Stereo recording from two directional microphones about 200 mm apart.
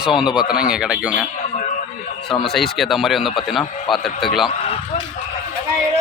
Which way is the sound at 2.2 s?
Centre (ahead or behind).